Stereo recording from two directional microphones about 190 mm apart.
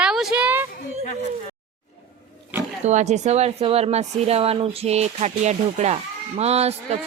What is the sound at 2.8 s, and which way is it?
Speech, 35° right (ahead or behind).